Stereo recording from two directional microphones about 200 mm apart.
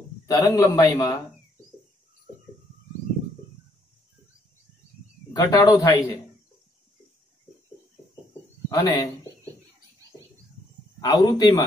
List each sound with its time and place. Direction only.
0.3 s a man's voice: 20° left (ahead or behind)
5.3 s a man's voice: 20° left (ahead or behind)
8.6 s a man's voice: 20° left (ahead or behind)
11.0 s a man's voice: 20° left (ahead or behind)